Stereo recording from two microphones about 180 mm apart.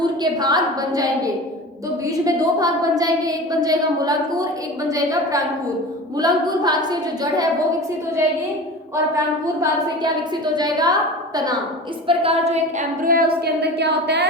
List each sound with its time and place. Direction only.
0.0 s a woman's voice: 25° right (ahead or behind)
9.6 s a woman's voice: 25° right (ahead or behind)
12.0 s a woman's voice: 35° right (ahead or behind)
13.0 s a woman's voice: 55° right (ahead or behind)